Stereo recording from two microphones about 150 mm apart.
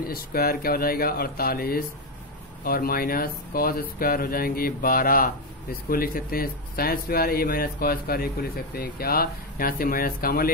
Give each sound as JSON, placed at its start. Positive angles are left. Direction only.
{"t": 0.0, "sound": "speech", "side_deg": 90}